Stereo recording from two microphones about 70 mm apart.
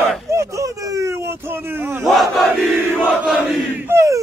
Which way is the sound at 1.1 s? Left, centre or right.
Right.